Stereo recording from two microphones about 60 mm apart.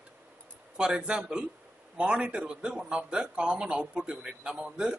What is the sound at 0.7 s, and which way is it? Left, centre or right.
A man's voice, centre.